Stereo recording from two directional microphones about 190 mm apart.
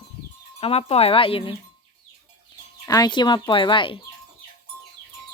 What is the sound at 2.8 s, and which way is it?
Speech, 20° left (ahead or behind).